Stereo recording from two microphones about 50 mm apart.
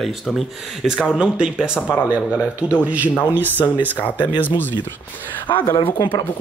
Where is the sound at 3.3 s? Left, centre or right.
Right.